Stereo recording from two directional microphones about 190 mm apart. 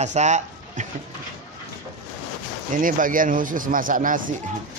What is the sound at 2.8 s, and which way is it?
Speech, 45° right (ahead or behind).